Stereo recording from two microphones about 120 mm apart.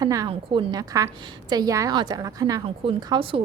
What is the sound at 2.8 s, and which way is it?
Speech, 50° right (ahead or behind).